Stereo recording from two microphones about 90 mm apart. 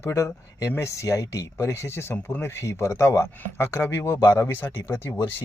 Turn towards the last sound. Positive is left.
turn(degrees=25)  # may be behind; listen again after turning